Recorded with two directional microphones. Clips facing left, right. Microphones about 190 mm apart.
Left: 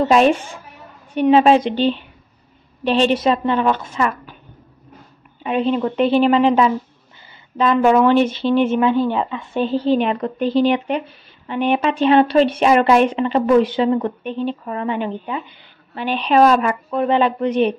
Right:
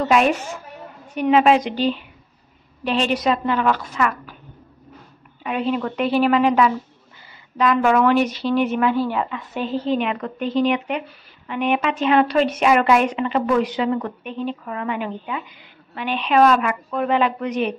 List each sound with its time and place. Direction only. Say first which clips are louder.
0.0 s a woman's voice: left 4 dB; 30° left (ahead or behind)
5.4 s a woman's voice: left 4 dB; 25° left (ahead or behind)